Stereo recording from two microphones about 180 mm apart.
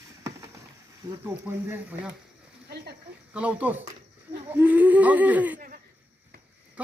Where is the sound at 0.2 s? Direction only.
15° right (ahead or behind).